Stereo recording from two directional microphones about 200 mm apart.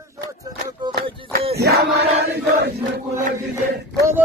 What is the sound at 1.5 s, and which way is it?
Chant, 55° right (ahead or behind).